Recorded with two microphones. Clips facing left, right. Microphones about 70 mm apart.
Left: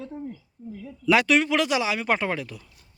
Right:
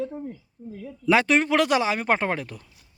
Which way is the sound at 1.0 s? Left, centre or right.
Right.